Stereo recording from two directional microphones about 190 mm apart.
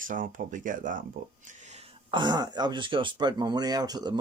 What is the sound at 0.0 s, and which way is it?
Speech, 45° right (ahead or behind).